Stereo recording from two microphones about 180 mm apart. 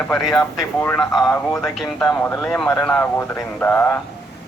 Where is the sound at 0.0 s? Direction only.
Centre (ahead or behind).